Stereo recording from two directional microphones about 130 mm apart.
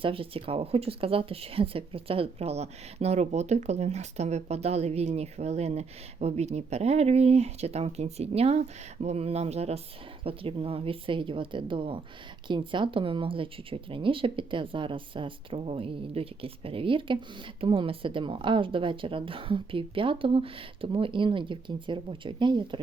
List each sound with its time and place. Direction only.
0.0 s a woman's voice: 45° right (ahead or behind)